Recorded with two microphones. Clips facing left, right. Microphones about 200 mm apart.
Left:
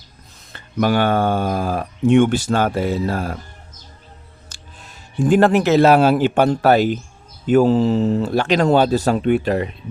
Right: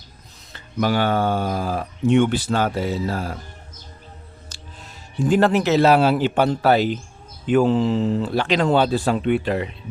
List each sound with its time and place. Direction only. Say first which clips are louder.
0.5 s speech: left 3 dB; 55° left (ahead or behind)
5.2 s speech: left 3 dB; 50° left (ahead or behind)